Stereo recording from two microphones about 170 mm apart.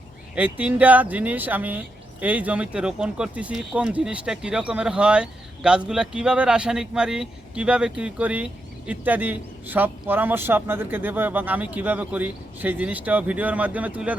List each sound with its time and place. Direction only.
0.3 s a man's voice: 10° right (ahead or behind)